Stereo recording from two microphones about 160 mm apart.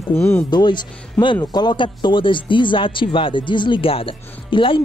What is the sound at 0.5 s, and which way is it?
Speech, 30° left (ahead or behind).